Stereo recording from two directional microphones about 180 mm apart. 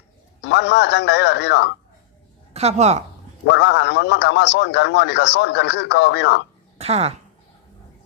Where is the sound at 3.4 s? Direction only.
75° left (ahead or behind).